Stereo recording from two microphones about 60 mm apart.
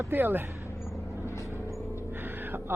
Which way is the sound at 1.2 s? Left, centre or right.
Left.